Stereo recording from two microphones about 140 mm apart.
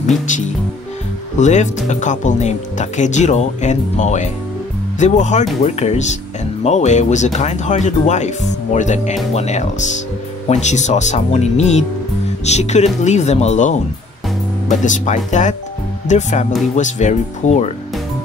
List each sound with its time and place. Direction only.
1.4 s speech: 60° left (ahead or behind)